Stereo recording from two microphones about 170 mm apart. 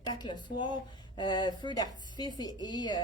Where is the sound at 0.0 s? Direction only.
25° left (ahead or behind).